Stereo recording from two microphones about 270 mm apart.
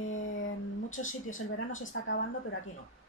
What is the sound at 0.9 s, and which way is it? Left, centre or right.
Speech, left.